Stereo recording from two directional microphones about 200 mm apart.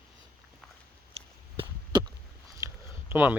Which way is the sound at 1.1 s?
25° right (ahead or behind).